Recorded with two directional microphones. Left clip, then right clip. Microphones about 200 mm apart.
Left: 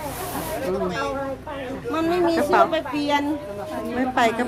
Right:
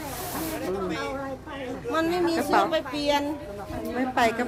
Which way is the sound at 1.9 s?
55° right (ahead or behind).